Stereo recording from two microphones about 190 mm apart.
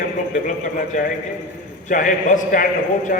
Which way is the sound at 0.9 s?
40° left (ahead or behind).